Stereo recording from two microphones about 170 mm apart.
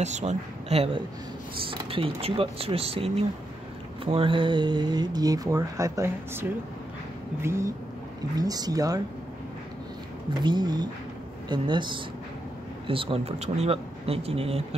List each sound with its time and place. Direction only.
0.0 s speech: 45° right (ahead or behind); by 9.0 s 20° right (ahead or behind)
10.4 s speech: 25° right (ahead or behind)